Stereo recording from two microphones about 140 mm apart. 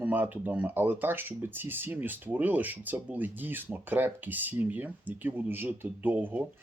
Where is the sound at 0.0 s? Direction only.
15° right (ahead or behind).